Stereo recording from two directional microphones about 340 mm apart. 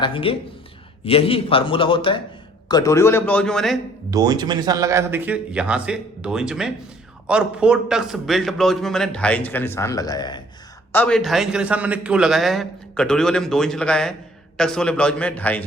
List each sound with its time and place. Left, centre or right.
0.0 s a man's voice: centre
4.1 s a man's voice: centre